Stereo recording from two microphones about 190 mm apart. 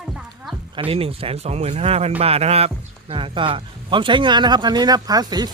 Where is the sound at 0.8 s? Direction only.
30° right (ahead or behind).